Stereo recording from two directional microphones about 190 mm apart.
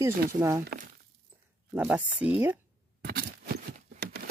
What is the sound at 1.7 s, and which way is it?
Speech, 10° right (ahead or behind).